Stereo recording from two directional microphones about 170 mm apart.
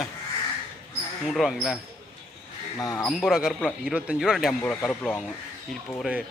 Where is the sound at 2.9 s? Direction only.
Centre (ahead or behind).